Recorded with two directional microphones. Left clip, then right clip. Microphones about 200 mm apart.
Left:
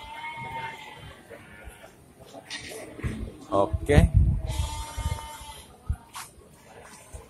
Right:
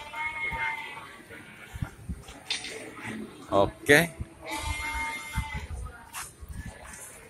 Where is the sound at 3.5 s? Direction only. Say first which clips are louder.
Right 2 dB; centre (ahead or behind).